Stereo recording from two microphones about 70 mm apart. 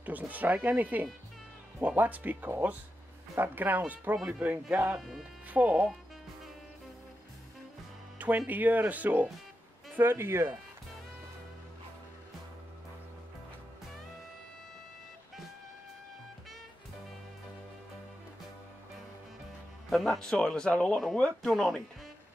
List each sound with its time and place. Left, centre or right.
0.0 s speech: right
4.9 s speech: centre
5.5 s speech: right
8.2 s speech: right
9.9 s speech: right
19.9 s speech: centre
21.4 s speech: centre